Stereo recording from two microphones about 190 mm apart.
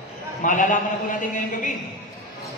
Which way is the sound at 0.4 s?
45° left (ahead or behind).